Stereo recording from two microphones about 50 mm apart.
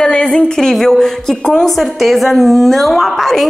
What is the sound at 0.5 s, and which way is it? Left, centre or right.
A woman's voice, centre.